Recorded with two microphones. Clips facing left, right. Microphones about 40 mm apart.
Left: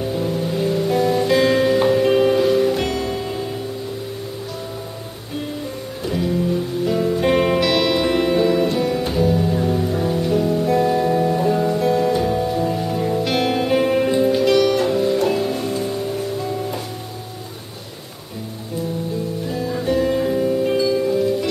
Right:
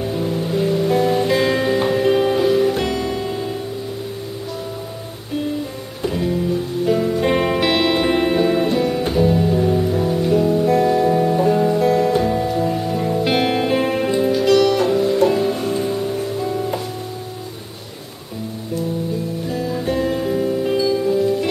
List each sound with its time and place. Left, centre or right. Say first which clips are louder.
0.0 s music: even; centre
6.0 s music: right 1 dB; centre
7.6 s music: right 1 dB; right
9.5 s music: right 3 dB; centre
13.2 s music: right 3 dB; centre
14.3 s music: right 1 dB; centre
19.5 s music: left 1 dB; centre